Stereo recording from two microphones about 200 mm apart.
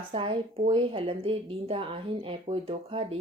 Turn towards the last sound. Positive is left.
turn(degrees=-30)  # may be behind; listen again after turning